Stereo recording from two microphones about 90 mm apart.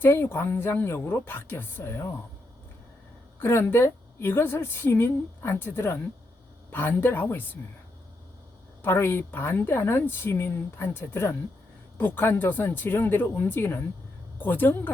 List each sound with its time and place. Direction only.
0.0 s a woman's voice: 25° left (ahead or behind)
3.3 s a woman's voice: 25° left (ahead or behind)
8.8 s a woman's voice: 25° left (ahead or behind)